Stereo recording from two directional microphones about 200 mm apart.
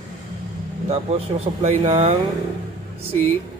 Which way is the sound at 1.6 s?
35° right (ahead or behind).